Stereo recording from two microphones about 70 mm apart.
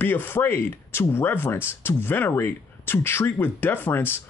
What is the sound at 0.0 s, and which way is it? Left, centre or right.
Speech, left.